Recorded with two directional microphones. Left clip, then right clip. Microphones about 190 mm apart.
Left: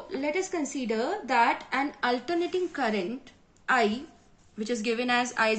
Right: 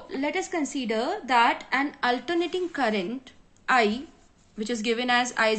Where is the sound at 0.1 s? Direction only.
30° right (ahead or behind).